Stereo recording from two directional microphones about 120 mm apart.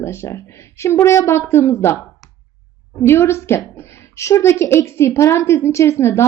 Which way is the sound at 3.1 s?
20° left (ahead or behind).